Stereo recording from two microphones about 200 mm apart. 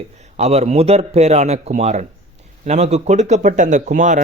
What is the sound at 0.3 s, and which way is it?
Speech, 35° right (ahead or behind).